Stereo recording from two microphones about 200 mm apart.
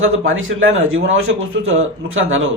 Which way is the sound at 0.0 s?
80° right.